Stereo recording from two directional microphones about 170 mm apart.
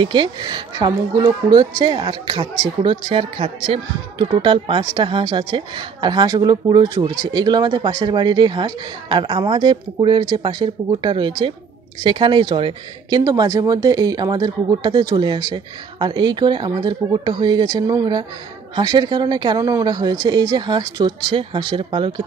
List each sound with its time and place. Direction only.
0.0 s speech: 30° right (ahead or behind)